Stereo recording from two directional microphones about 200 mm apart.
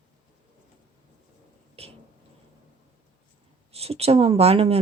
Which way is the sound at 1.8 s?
30° right (ahead or behind).